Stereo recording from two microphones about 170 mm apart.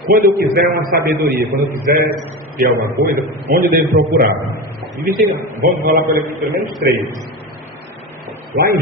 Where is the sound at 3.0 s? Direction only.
55° right (ahead or behind).